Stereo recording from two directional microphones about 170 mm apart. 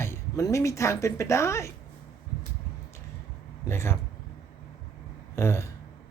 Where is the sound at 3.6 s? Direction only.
15° left (ahead or behind).